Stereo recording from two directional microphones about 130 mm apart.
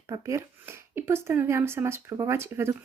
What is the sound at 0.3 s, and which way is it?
Speech, 20° right (ahead or behind).